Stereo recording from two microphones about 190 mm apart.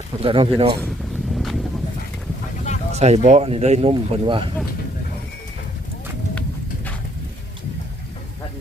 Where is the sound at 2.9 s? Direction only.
35° right (ahead or behind).